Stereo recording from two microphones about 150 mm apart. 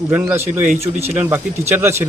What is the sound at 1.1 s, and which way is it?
Speech, 15° right (ahead or behind).